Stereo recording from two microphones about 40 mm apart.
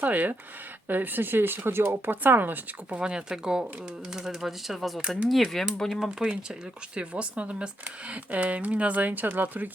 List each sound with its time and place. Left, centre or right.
0.0 s speech: right
3.0 s speech: centre
5.6 s speech: centre
5.9 s speech: centre
6.2 s speech: right